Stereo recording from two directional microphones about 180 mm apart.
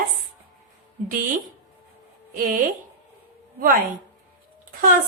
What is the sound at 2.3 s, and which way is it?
Speech, 50° right (ahead or behind).